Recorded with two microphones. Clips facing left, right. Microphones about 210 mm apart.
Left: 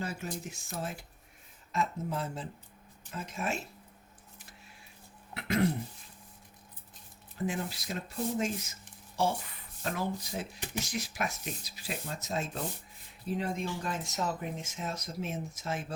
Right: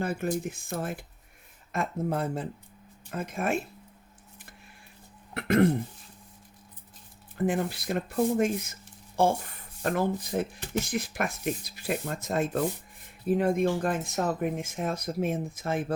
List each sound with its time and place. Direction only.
0.0 s speech: 55° right (ahead or behind)
5.3 s speech: 55° right (ahead or behind)
7.3 s speech: 55° right (ahead or behind)